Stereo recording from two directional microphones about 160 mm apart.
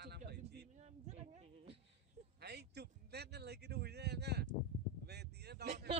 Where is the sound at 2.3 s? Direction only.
90° right.